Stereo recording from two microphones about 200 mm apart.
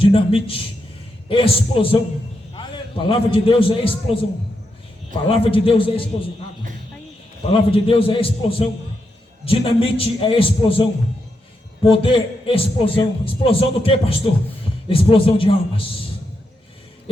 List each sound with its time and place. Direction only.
0.0 s a man's voice: 25° left (ahead or behind)
7.7 s a man's voice: 25° left (ahead or behind)
11.9 s a man's voice: 25° left (ahead or behind)